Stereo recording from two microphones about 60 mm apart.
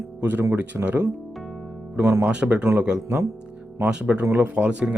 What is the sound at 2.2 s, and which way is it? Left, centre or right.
Speech, centre.